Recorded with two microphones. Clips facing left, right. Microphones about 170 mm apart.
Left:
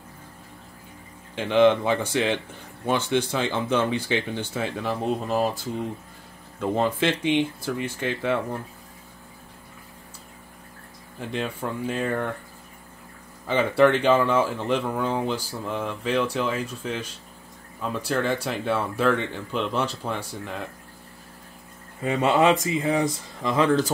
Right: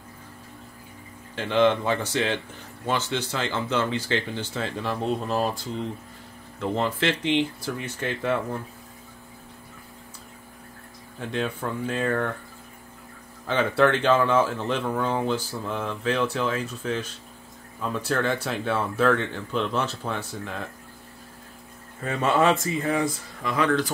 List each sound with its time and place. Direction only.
1.3 s speech: 15° left (ahead or behind)
6.6 s speech: 15° left (ahead or behind)
11.1 s speech: 5° left (ahead or behind)
13.5 s speech: 10° left (ahead or behind)
22.0 s speech: 15° left (ahead or behind)